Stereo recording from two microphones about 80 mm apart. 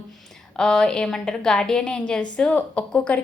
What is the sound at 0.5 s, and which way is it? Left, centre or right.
A woman's voice, centre.